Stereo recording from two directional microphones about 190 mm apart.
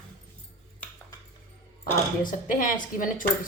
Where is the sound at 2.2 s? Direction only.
45° left (ahead or behind).